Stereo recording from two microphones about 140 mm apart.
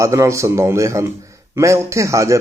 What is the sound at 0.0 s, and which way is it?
A man's voice, 20° right (ahead or behind).